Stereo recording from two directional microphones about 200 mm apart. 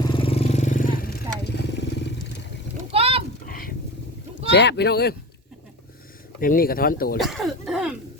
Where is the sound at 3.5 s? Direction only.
45° left (ahead or behind).